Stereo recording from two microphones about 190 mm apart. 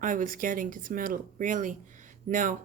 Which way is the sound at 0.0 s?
45° right (ahead or behind).